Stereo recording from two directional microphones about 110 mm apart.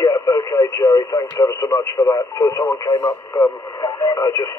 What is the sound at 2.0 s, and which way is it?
Speech, 45° left (ahead or behind).